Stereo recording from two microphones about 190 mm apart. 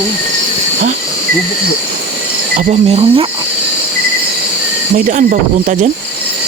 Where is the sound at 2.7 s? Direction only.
30° right (ahead or behind).